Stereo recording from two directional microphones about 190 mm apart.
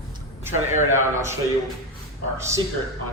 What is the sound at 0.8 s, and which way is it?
Speech, 15° right (ahead or behind).